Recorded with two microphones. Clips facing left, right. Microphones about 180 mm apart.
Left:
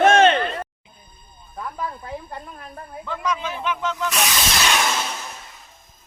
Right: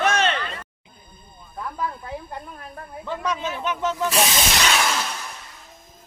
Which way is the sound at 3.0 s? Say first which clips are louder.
Even; 30° right (ahead or behind).